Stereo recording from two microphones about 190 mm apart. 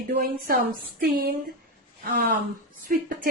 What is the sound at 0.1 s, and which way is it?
Speech, 50° right (ahead or behind).